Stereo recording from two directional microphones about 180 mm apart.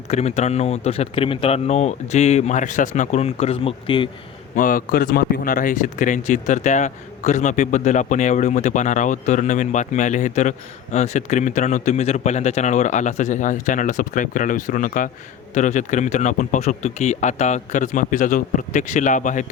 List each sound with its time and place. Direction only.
0.1 s speech: 40° left (ahead or behind)
4.5 s speech: 50° left (ahead or behind)